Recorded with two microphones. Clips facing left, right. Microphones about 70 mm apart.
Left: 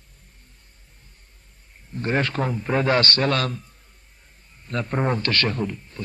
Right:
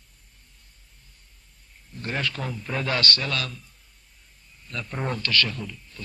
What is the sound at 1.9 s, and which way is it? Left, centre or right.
A man's voice, left.